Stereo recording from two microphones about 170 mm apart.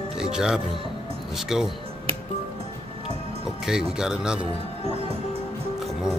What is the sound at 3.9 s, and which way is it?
Speech, 5° right (ahead or behind).